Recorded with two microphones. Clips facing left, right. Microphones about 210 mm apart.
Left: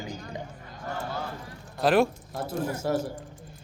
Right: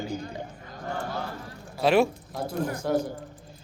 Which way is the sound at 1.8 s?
Centre (ahead or behind).